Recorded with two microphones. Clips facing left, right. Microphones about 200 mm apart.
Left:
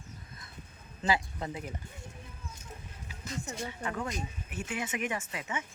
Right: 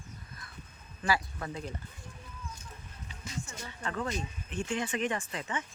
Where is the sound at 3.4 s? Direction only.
35° left (ahead or behind).